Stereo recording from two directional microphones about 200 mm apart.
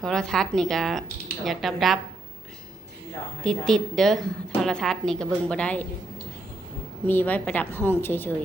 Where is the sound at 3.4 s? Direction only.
Centre (ahead or behind).